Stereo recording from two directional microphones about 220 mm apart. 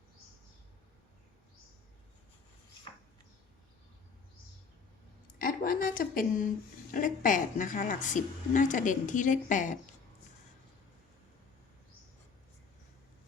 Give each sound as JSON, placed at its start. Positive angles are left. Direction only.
{"t": 5.4, "sound": "a woman's voice", "side_deg": 40}